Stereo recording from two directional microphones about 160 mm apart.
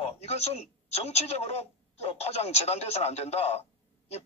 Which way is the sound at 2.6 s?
40° left (ahead or behind).